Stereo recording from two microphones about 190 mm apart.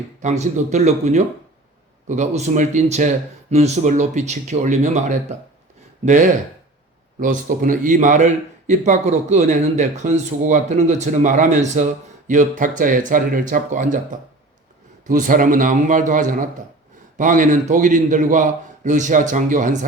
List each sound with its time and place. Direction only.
0.2 s a man's voice: 40° right (ahead or behind)